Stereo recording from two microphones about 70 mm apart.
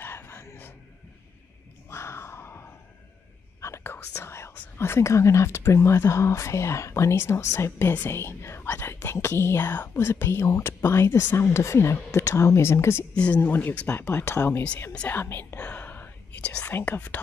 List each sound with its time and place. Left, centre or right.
0.0 s whispering: left
1.9 s a sound: left
3.6 s whispering: left
4.7 s a woman's voice: left
13.1 s speech: centre
13.4 s a woman's voice: left
14.9 s speech: centre
15.1 s a woman's voice: left
15.6 s whispering: left
16.7 s speech: left